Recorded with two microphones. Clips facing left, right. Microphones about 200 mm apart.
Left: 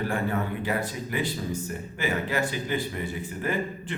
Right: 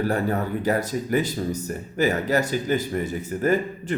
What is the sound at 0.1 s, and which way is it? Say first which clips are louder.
Speech: right 4 dB; 40° right (ahead or behind).